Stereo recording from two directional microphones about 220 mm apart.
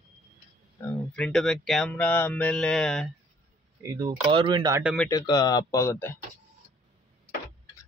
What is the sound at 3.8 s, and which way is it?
Speech, 15° right (ahead or behind).